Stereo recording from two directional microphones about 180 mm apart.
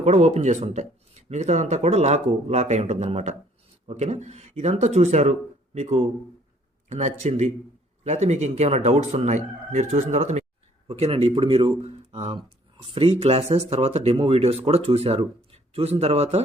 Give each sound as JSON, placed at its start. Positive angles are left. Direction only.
{"t": 0.0, "sound": "speech", "side_deg": -40}